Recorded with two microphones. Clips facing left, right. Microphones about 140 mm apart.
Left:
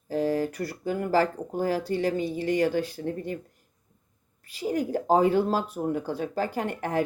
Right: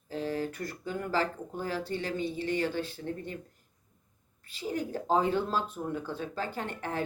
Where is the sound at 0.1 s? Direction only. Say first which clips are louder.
Left 7 dB; 40° left (ahead or behind).